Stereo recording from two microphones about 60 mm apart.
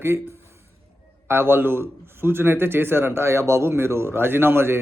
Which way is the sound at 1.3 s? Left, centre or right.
Right.